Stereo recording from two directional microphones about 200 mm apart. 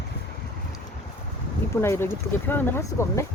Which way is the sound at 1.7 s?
10° left (ahead or behind).